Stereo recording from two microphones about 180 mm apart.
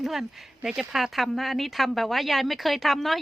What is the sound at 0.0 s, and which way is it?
Speech, centre (ahead or behind).